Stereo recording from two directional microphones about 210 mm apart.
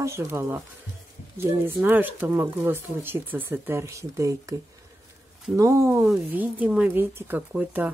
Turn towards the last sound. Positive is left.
turn(degrees=-10)  # may be behind; listen again after turning